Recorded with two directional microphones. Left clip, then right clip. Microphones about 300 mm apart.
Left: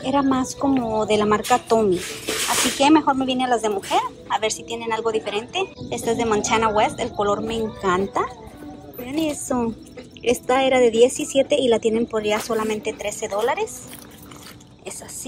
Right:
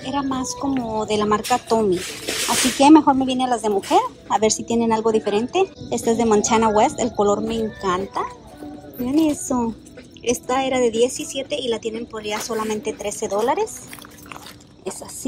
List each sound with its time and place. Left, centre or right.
0.0 s a woman's voice: centre